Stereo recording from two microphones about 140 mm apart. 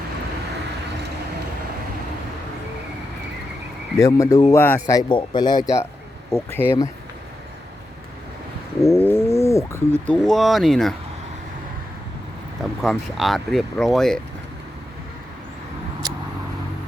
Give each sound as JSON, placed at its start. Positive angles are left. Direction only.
{"t": 3.9, "sound": "speech", "side_deg": 25}
{"t": 4.6, "sound": "speech", "side_deg": 15}
{"t": 4.9, "sound": "speech", "side_deg": 35}
{"t": 6.5, "sound": "speech", "side_deg": 15}
{"t": 8.8, "sound": "cat", "side_deg": 20}
{"t": 10.1, "sound": "speech", "side_deg": 0}
{"t": 12.8, "sound": "speech", "side_deg": 0}